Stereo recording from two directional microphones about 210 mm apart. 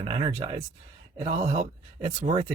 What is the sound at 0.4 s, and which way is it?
A man's voice, 25° right (ahead or behind).